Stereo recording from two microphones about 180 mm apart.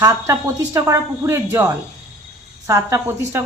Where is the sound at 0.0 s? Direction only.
20° right (ahead or behind).